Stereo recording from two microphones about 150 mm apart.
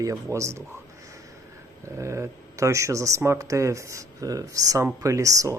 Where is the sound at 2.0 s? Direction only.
20° right (ahead or behind).